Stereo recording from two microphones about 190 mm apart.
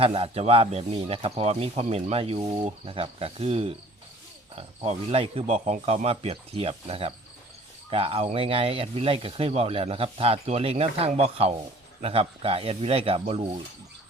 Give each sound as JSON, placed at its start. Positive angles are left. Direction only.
{"t": 0.0, "sound": "speech", "side_deg": -30}